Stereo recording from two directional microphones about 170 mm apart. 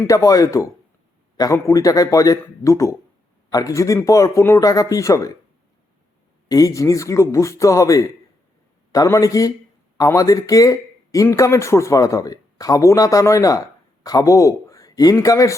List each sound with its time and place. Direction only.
0.1 s speech: 20° left (ahead or behind)
6.5 s speech: 20° left (ahead or behind)